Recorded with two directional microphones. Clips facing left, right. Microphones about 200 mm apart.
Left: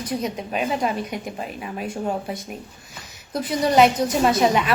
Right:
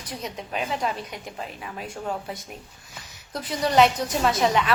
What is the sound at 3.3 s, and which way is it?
A woman's voice, 10° left (ahead or behind).